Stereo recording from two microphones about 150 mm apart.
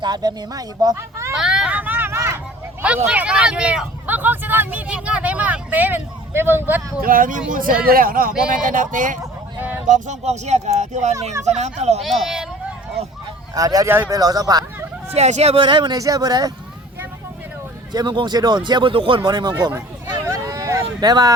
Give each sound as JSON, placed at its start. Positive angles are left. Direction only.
{"t": 0.0, "sound": "speech", "side_deg": -25}
{"t": 1.4, "sound": "vehicle", "side_deg": -5}
{"t": 3.1, "sound": "speech", "side_deg": -10}
{"t": 7.0, "sound": "speech", "side_deg": -65}
{"t": 9.6, "sound": "a sound", "side_deg": -10}
{"t": 9.8, "sound": "speech", "side_deg": -55}
{"t": 12.0, "sound": "speech", "side_deg": 0}
{"t": 13.5, "sound": "speech", "side_deg": -25}
{"t": 15.1, "sound": "speech", "side_deg": -45}
{"t": 17.9, "sound": "speech", "side_deg": -30}
{"t": 20.2, "sound": "a sound", "side_deg": -20}